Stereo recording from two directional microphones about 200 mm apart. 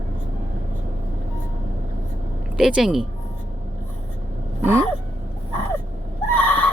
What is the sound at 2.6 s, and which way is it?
Speech, centre (ahead or behind).